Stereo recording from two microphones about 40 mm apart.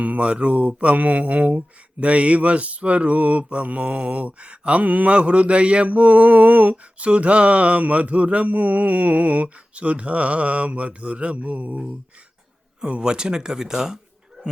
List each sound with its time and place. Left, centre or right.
0.0 s speech: right
12.8 s speech: right